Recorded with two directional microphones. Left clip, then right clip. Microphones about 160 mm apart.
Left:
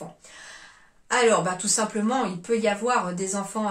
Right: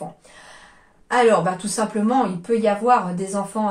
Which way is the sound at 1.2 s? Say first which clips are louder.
Right 2 dB; 15° left (ahead or behind).